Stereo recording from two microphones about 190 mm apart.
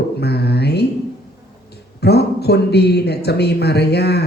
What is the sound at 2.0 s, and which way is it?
A man's voice, 60° left (ahead or behind).